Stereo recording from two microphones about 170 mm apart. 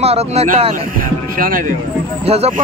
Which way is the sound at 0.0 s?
35° right (ahead or behind).